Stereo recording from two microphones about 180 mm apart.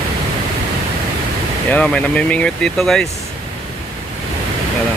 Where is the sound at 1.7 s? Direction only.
5° left (ahead or behind).